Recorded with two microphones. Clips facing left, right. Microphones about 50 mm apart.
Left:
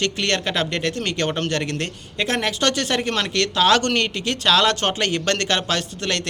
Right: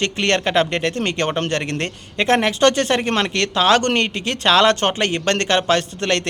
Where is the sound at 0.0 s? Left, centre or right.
Right.